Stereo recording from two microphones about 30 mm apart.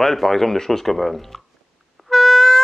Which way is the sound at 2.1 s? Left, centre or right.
Centre.